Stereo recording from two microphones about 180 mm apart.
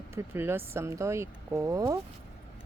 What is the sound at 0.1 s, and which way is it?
Speech, 15° right (ahead or behind).